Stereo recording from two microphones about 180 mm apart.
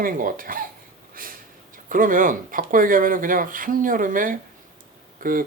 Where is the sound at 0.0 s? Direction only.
50° right (ahead or behind).